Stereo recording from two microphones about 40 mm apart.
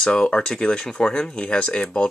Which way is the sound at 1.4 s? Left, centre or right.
Left.